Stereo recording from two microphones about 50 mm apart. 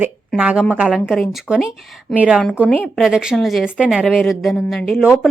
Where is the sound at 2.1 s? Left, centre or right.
Centre.